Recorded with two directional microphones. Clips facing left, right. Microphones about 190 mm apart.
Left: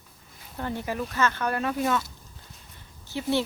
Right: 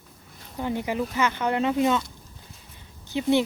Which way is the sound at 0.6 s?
15° right (ahead or behind).